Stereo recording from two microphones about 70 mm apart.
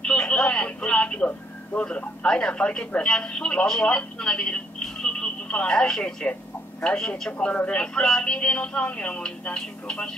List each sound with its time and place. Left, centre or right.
0.0 s telephone: centre
1.8 s a man's voice: centre